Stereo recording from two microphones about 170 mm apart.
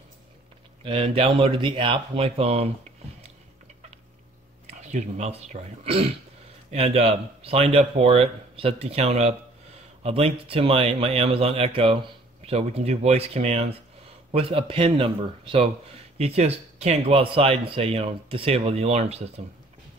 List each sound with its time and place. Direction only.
0.8 s speech: 35° right (ahead or behind)
4.6 s speech: 45° right (ahead or behind)